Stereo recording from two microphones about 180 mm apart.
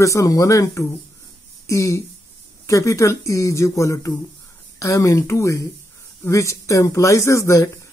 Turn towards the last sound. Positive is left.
turn(degrees=15)  # may be behind; listen again after turning